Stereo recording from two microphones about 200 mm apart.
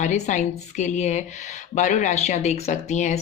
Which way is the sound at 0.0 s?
35° left (ahead or behind).